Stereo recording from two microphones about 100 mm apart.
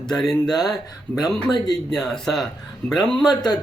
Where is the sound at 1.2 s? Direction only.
45° left (ahead or behind).